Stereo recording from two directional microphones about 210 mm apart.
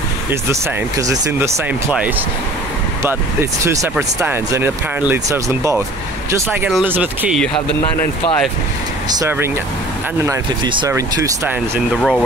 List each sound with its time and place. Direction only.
0.3 s speech: 15° right (ahead or behind)
3.6 s speech: 15° right (ahead or behind)
9.1 s speech: 15° right (ahead or behind)
12.0 s speech: 5° left (ahead or behind)